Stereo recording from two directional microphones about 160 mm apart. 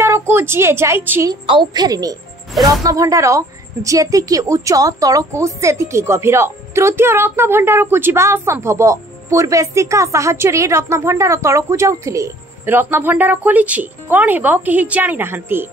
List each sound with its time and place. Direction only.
0.0 s speech: 15° right (ahead or behind)
1.3 s a woman's voice: 30° right (ahead or behind); by 15.7 s 15° right (ahead or behind)